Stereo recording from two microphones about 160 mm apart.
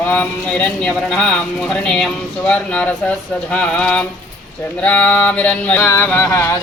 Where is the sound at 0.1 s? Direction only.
10° left (ahead or behind).